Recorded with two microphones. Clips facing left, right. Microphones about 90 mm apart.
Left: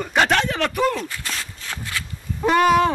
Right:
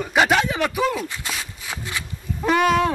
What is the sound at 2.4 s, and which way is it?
Speech, centre (ahead or behind).